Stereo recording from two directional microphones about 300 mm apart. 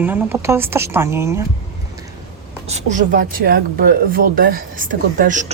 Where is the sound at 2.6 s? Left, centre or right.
Right.